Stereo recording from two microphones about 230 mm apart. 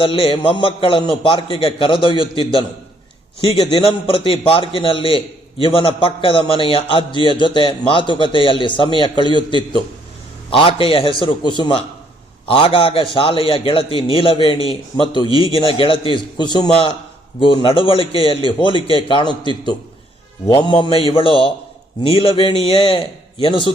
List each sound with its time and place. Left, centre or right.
0.0 s a man's voice: left